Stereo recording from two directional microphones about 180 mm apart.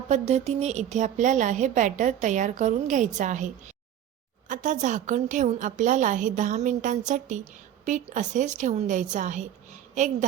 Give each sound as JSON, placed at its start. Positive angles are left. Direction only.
{"t": 0.1, "sound": "a woman's voice", "side_deg": -40}